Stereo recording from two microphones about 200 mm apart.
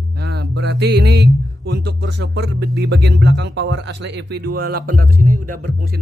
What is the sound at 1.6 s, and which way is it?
Music, 55° right (ahead or behind).